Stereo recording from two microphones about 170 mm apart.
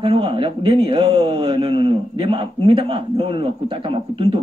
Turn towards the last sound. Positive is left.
turn(degrees=-30)  # may be behind; listen again after turning